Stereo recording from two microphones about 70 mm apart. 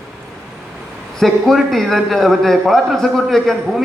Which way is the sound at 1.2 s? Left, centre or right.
Centre.